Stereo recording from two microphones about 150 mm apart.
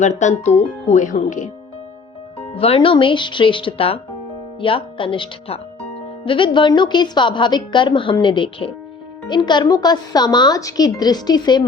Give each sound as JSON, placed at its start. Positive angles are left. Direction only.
{"t": 0.0, "sound": "speech", "side_deg": 50}
{"t": 2.6, "sound": "a woman's voice", "side_deg": 40}